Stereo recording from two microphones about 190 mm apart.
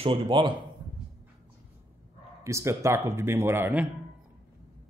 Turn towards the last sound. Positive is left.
turn(degrees=-10)  # may be behind; listen again after turning